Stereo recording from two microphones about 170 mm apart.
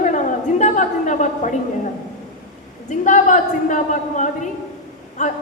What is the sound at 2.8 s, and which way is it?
A woman's voice, 45° left (ahead or behind).